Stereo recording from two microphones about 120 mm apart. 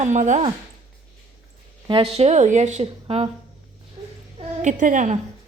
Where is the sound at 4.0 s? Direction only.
50° right (ahead or behind).